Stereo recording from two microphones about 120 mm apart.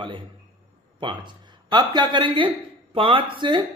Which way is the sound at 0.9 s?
40° right (ahead or behind).